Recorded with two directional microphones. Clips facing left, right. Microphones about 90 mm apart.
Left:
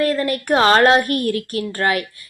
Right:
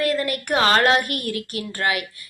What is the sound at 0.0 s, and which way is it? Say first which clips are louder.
A woman's voice: left 3 dB; 35° left (ahead or behind).